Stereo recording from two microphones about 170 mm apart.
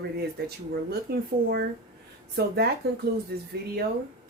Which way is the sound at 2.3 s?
70° right (ahead or behind).